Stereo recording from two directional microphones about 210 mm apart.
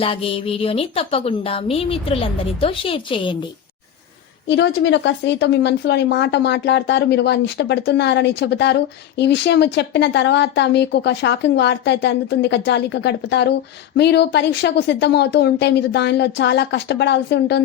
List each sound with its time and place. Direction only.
0.0 s a woman's voice: 25° left (ahead or behind)
4.4 s speech: 60° left (ahead or behind)